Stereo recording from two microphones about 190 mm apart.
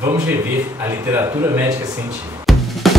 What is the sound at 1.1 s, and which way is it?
Speech, 15° right (ahead or behind).